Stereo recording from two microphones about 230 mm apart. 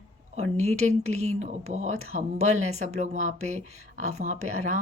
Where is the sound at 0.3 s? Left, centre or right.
Right.